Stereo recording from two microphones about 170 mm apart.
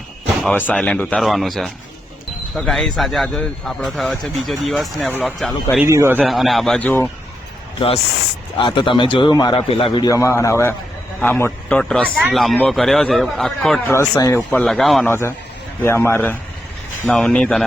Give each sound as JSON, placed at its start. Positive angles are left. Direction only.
{"t": 0.4, "sound": "a man's voice", "side_deg": 10}
{"t": 5.8, "sound": "a man's voice", "side_deg": -15}
{"t": 6.2, "sound": "a man's voice", "side_deg": 0}
{"t": 8.5, "sound": "a man's voice", "side_deg": 30}
{"t": 14.2, "sound": "a man's voice", "side_deg": 20}
{"t": 14.6, "sound": "a man's voice", "side_deg": 0}
{"t": 15.0, "sound": "a man's voice", "side_deg": 15}